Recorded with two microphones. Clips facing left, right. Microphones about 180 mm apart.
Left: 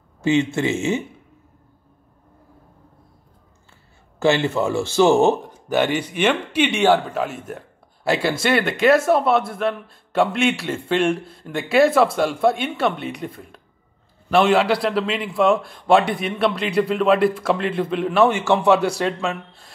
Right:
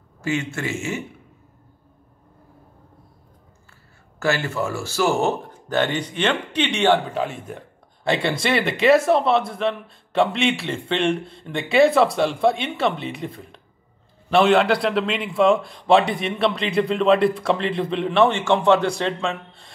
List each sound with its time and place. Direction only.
0.2 s speech: 20° left (ahead or behind)
4.2 s speech: 25° left (ahead or behind); by 19.7 s 5° left (ahead or behind)